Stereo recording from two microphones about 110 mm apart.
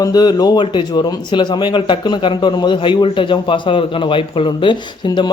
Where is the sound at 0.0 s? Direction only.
40° left (ahead or behind).